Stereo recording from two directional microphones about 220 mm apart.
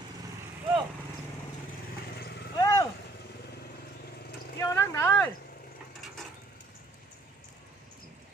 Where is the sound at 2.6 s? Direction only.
15° left (ahead or behind).